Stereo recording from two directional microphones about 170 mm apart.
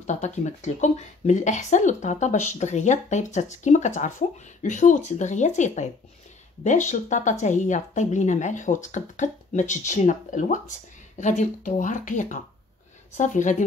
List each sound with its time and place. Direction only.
0.0 s a woman's voice: 45° left (ahead or behind)